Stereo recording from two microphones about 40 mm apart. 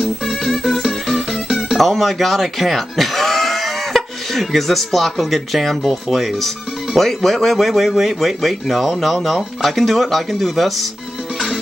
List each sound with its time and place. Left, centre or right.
0.0 s music: centre
1.5 s speech: centre
11.3 s music: centre